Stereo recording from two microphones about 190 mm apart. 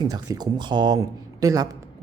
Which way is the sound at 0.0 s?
20° right (ahead or behind).